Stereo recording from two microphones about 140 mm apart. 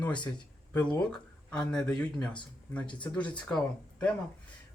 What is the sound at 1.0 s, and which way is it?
Speech, 5° left (ahead or behind).